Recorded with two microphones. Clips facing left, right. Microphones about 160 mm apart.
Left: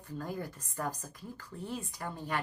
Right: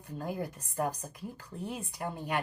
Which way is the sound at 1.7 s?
15° right (ahead or behind).